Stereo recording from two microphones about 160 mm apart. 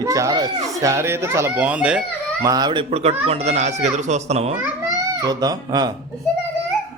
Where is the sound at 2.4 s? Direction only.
25° right (ahead or behind); by 4.5 s 40° right (ahead or behind).